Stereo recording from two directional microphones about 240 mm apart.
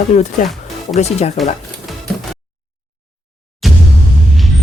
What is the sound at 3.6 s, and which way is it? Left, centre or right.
Music, centre.